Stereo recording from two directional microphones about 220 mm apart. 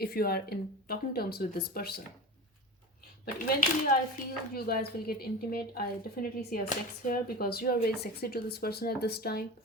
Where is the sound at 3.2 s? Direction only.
40° left (ahead or behind).